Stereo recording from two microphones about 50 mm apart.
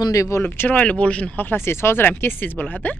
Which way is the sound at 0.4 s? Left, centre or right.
Left.